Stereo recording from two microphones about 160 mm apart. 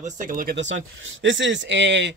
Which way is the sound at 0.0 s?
55° right (ahead or behind).